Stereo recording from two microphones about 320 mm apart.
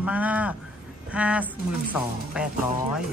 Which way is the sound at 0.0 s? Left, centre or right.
Centre.